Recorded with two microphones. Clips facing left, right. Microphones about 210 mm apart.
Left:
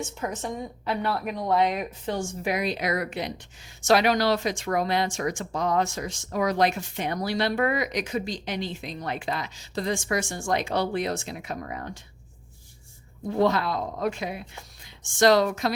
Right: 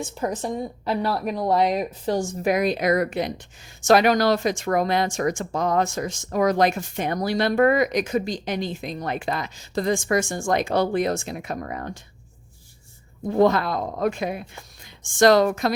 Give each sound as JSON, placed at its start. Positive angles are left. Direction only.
{"t": 0.0, "sound": "a woman's voice", "side_deg": -35}
{"t": 13.2, "sound": "speech", "side_deg": -50}